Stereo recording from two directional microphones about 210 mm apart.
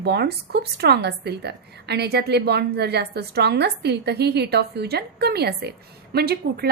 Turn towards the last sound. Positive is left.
turn(degrees=-50)  # may be behind; listen again after turning